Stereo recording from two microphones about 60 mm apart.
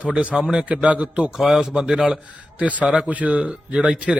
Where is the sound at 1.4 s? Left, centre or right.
Centre.